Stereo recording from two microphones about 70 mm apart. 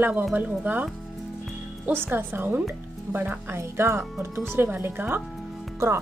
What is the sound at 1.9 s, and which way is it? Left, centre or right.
A woman's voice, right.